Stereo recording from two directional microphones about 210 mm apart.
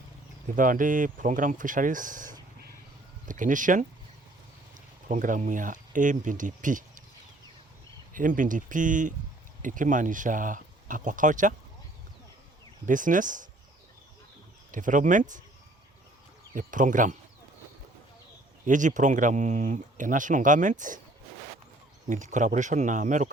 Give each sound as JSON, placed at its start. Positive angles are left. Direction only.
{"t": 0.5, "sound": "speech", "side_deg": -40}
{"t": 5.0, "sound": "speech", "side_deg": -40}
{"t": 8.1, "sound": "speech", "side_deg": -40}
{"t": 12.8, "sound": "speech", "side_deg": -40}
{"t": 14.7, "sound": "speech", "side_deg": -40}
{"t": 16.6, "sound": "speech", "side_deg": -40}
{"t": 18.6, "sound": "speech", "side_deg": -35}
{"t": 22.0, "sound": "speech", "side_deg": -35}